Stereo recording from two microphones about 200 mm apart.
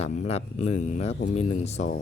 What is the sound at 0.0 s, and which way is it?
Speech, 35° left (ahead or behind).